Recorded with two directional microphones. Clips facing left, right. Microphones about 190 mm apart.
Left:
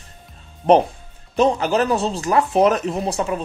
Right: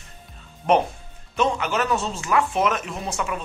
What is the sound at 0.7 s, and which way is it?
Speech, 35° left (ahead or behind).